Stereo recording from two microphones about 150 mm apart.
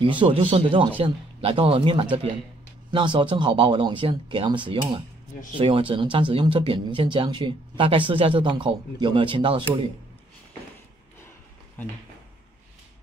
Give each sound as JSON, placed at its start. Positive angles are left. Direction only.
{"t": 0.0, "sound": "speech", "side_deg": -35}